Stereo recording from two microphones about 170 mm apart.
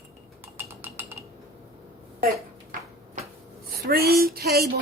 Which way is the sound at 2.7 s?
45° right (ahead or behind).